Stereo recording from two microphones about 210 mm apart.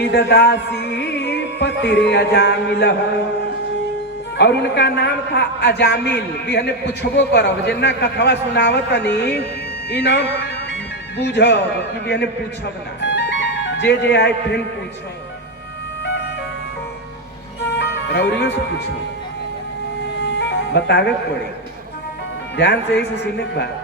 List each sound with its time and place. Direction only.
0.0 s music: 50° left (ahead or behind)
4.4 s music: 55° left (ahead or behind)
9.9 s speech: 50° left (ahead or behind)
11.2 s music: 55° left (ahead or behind)
17.7 s music: 55° left (ahead or behind)
20.4 s music: 55° left (ahead or behind)
22.5 s music: 55° left (ahead or behind)